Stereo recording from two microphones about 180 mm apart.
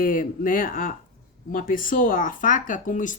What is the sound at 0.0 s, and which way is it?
Speech, 45° left (ahead or behind).